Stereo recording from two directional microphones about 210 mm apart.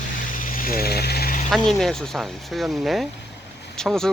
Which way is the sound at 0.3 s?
40° left (ahead or behind).